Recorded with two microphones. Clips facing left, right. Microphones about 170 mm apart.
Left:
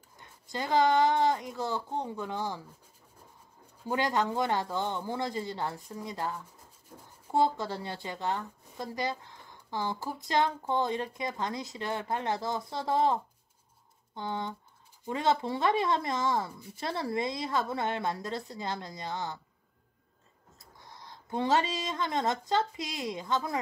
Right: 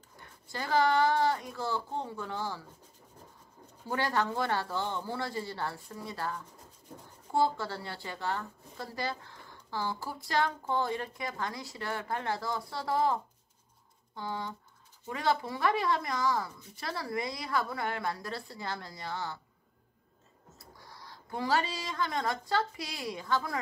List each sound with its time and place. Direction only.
0.2 s a woman's voice: 20° left (ahead or behind)
3.8 s a woman's voice: 15° left (ahead or behind)
20.5 s speech: 20° left (ahead or behind)